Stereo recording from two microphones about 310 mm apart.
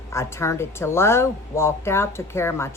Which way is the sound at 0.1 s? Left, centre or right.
Centre.